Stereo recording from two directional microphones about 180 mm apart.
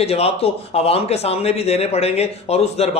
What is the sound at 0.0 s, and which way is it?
Speech, 35° left (ahead or behind).